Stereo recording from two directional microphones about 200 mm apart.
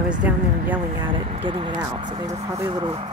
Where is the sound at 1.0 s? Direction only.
25° right (ahead or behind).